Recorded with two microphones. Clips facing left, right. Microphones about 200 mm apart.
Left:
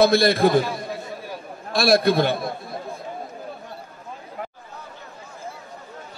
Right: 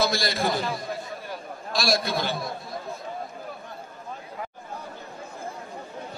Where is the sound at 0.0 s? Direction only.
60° left (ahead or behind).